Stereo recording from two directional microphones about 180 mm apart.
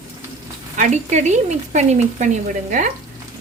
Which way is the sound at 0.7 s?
40° right (ahead or behind).